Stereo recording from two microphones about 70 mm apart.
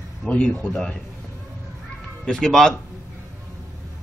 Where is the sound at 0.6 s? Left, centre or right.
Centre.